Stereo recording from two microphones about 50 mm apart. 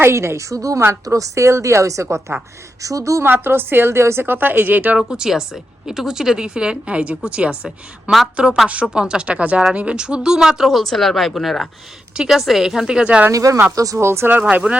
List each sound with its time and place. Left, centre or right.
0.0 s a woman's voice: right
2.8 s a woman's voice: right
3.2 s a woman's voice: right
4.9 s a woman's voice: centre
10.7 s speech: centre
12.1 s speech: centre
13.7 s speech: right
14.5 s a woman's voice: right